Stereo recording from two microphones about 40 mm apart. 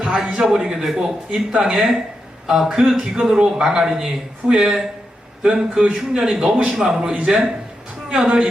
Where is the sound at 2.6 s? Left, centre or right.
Centre.